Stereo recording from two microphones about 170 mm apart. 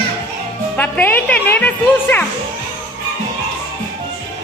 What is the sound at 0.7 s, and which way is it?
Speech, 10° left (ahead or behind).